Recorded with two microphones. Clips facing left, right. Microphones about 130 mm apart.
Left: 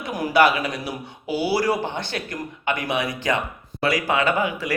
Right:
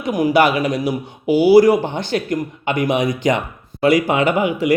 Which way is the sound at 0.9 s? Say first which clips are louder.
Right 10 dB; 15° right (ahead or behind).